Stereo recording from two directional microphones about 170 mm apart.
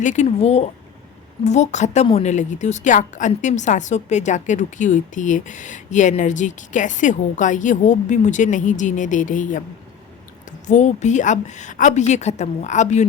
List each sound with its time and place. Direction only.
0.0 s a woman's voice: 45° left (ahead or behind)
10.7 s a woman's voice: 45° left (ahead or behind)